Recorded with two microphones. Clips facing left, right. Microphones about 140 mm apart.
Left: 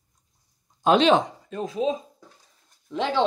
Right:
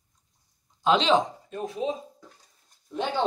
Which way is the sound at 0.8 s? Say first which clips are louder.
Left 3 dB; 55° left (ahead or behind).